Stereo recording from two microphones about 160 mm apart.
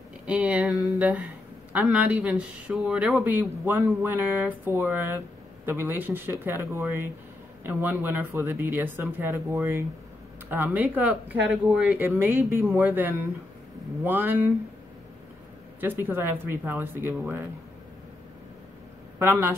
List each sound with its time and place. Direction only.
0.3 s speech: 5° right (ahead or behind)
15.8 s speech: 15° right (ahead or behind)